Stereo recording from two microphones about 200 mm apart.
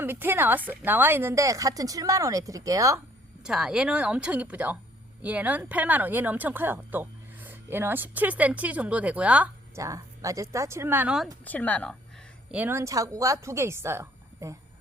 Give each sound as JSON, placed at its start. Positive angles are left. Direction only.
{"t": 0.0, "sound": "speech", "side_deg": -10}
{"t": 3.4, "sound": "speech", "side_deg": -5}
{"t": 11.4, "sound": "speech", "side_deg": 10}
{"t": 12.5, "sound": "speech", "side_deg": -10}